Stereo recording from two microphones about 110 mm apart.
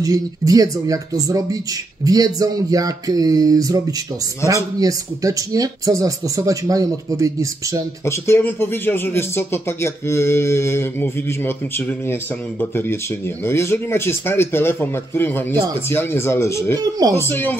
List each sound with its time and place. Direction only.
0.0 s speech: 35° right (ahead or behind)
8.0 s speech: 25° left (ahead or behind)